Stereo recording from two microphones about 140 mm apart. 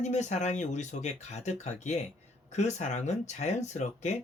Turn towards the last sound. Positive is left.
turn(degrees=55)  # may be behind; listen again after turning